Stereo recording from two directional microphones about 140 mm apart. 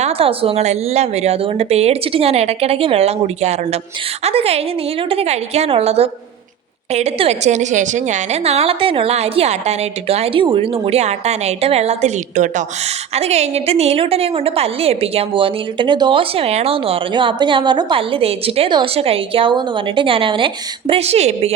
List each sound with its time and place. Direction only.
0.0 s a woman's voice: 45° right (ahead or behind); by 12.6 s 60° right (ahead or behind)
13.1 s a woman's voice: 50° right (ahead or behind)